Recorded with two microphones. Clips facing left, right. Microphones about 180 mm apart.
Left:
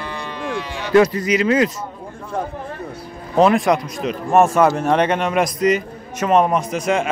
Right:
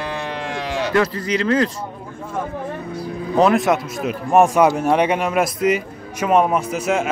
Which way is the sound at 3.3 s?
Centre (ahead or behind).